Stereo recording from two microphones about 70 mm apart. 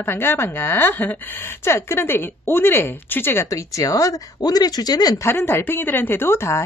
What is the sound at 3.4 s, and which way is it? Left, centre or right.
Speech, left.